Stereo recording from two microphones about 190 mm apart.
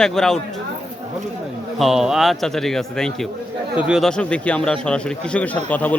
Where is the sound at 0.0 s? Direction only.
5° left (ahead or behind).